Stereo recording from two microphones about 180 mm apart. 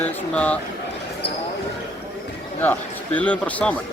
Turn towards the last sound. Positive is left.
turn(degrees=5)  # may be behind; listen again after turning